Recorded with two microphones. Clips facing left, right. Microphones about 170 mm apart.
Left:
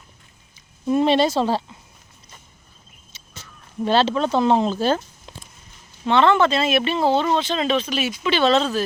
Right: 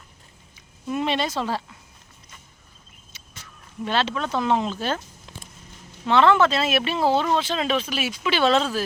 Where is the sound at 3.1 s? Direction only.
30° left (ahead or behind).